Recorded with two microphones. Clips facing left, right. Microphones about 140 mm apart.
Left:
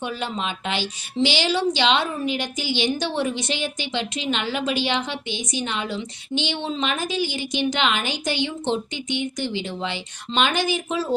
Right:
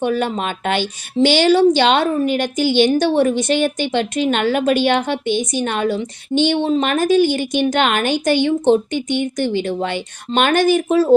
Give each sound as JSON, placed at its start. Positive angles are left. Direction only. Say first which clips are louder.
{"t": 0.0, "sound": "a woman's voice", "louder": "right 9 dB", "side_deg": -50}